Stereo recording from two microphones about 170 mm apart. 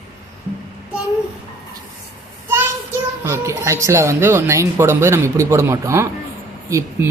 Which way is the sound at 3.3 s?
15° right (ahead or behind).